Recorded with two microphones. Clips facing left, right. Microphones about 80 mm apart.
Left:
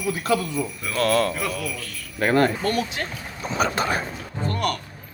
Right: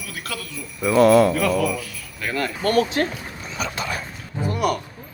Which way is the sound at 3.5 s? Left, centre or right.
Left.